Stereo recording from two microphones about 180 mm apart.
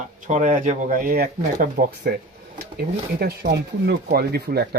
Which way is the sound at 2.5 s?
60° right (ahead or behind).